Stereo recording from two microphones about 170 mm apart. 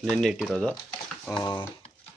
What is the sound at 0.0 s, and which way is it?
Speech, centre (ahead or behind).